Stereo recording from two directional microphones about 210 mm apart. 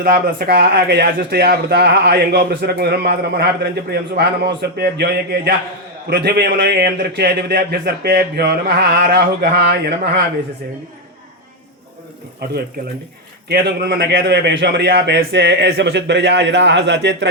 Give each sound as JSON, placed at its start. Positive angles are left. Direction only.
{"t": 0.0, "sound": "a man's voice", "side_deg": -45}
{"t": 13.5, "sound": "a man's voice", "side_deg": -50}